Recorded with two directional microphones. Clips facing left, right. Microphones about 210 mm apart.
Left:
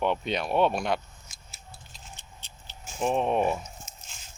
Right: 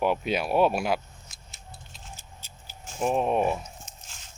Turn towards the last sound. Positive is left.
turn(degrees=0)  # may be behind; listen again after turning